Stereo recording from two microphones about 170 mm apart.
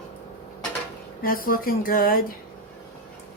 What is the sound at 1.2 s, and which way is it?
Speech, 55° left (ahead or behind).